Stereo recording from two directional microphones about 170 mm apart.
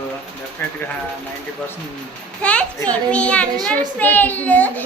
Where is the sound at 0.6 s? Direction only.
15° left (ahead or behind).